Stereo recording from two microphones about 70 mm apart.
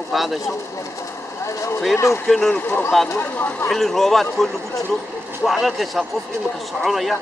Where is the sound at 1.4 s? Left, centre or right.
Left.